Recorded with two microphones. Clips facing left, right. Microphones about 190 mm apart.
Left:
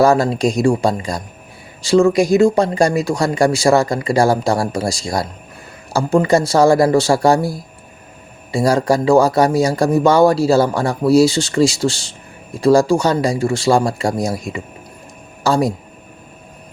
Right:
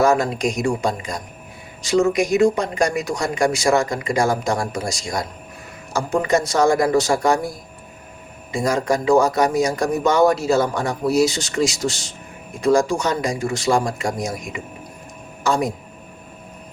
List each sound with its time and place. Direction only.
0.0 s speech: 30° left (ahead or behind)